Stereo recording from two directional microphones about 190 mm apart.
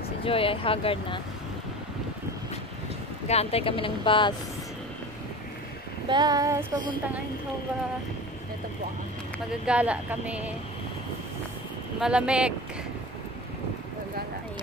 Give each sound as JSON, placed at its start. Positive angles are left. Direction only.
{"t": 0.2, "sound": "speech", "side_deg": 30}
{"t": 3.3, "sound": "speech", "side_deg": 30}
{"t": 6.0, "sound": "child singing", "side_deg": -20}
{"t": 9.7, "sound": "speech", "side_deg": -5}
{"t": 12.0, "sound": "speech", "side_deg": -5}